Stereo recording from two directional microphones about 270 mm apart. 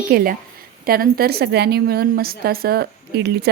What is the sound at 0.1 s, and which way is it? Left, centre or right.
Speech, right.